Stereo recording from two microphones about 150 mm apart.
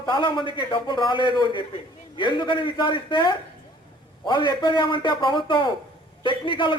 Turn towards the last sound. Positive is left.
turn(degrees=35)  # may be behind; listen again after turning